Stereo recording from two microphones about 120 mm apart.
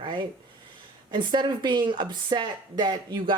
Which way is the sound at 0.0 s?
40° right (ahead or behind).